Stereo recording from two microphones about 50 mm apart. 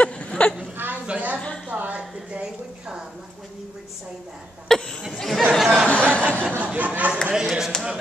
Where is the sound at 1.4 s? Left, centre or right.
Left.